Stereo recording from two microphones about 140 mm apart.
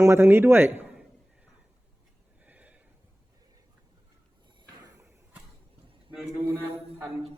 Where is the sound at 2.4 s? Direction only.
10° right (ahead or behind).